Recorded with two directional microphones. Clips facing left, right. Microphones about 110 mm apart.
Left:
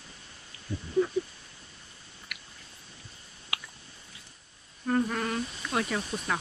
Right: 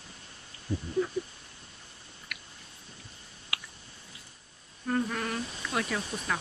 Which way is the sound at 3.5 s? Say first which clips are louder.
Left 2 dB; 25° left (ahead or behind).